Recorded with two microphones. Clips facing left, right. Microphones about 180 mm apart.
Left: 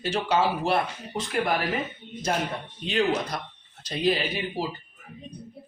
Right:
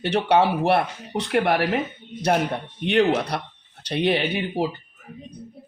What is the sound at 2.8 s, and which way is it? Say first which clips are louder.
Speech: right 5 dB; 65° right (ahead or behind).